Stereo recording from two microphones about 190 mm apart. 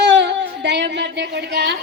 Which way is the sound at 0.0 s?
65° right (ahead or behind).